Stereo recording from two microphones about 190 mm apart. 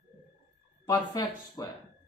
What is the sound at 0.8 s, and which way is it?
Speech, 20° left (ahead or behind).